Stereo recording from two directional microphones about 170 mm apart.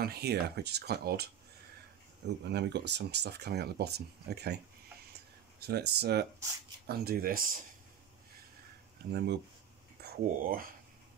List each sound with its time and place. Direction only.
0.0 s speech: 70° right (ahead or behind)
2.2 s speech: 85° right
5.6 s speech: 70° right (ahead or behind)
6.9 s speech: 60° right (ahead or behind)
9.1 s speech: 90° right
10.0 s speech: 55° right (ahead or behind)